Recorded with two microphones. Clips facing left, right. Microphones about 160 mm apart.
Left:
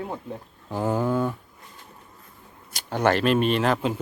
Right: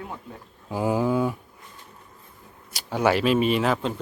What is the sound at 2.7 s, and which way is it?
Speech, 5° right (ahead or behind).